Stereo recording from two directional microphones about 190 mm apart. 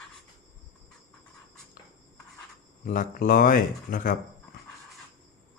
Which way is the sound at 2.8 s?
45° left (ahead or behind).